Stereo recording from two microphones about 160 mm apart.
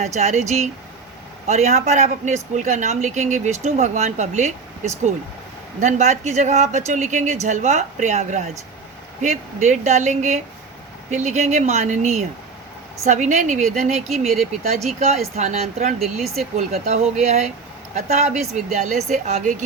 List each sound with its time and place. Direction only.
0.0 s speech: 45° right (ahead or behind)
15.4 s speech: 45° right (ahead or behind)
16.2 s speech: centre (ahead or behind)
16.6 s speech: 45° right (ahead or behind)